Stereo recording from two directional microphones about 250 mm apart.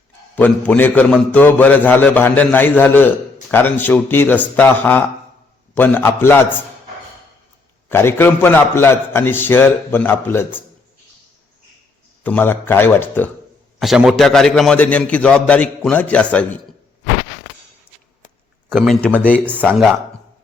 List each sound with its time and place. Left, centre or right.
0.3 s a man's voice: centre
7.9 s a man's voice: centre
12.2 s a man's voice: centre
18.7 s a man's voice: centre